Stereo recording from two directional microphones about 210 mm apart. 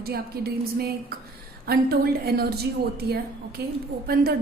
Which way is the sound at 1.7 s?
50° right (ahead or behind).